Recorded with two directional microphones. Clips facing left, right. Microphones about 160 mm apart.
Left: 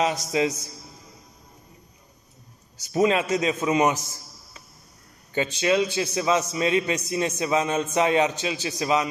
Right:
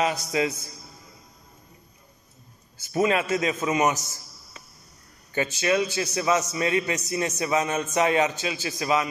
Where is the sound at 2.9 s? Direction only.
20° left (ahead or behind).